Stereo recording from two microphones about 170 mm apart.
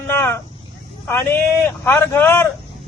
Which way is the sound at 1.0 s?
10° left (ahead or behind).